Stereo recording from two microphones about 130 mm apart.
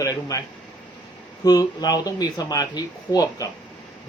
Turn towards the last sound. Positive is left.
turn(degrees=30)  # may be behind; listen again after turning